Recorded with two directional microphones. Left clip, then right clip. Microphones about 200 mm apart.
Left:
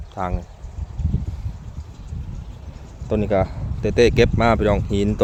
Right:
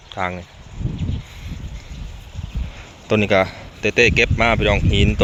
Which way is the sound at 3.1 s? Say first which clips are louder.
Right 4 dB; centre (ahead or behind).